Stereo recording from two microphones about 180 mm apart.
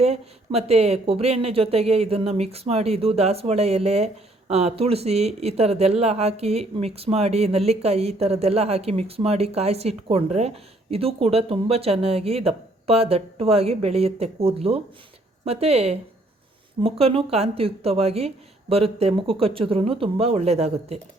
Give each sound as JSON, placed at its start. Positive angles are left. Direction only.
{"t": 0.0, "sound": "speech", "side_deg": -35}